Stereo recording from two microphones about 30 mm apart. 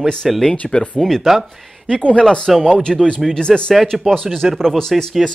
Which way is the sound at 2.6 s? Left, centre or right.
Left.